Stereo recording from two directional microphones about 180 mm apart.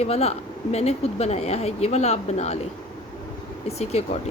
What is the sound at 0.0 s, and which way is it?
Speech, 35° left (ahead or behind).